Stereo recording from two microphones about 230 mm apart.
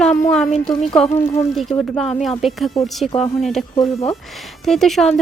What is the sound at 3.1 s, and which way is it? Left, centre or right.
Speech, left.